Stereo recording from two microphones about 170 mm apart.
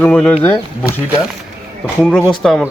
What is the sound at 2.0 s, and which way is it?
Speech, 5° left (ahead or behind).